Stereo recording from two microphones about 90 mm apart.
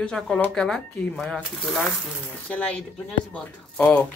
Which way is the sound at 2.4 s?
15° left (ahead or behind).